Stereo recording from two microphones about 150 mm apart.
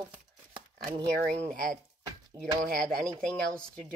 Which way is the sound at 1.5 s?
65° right (ahead or behind).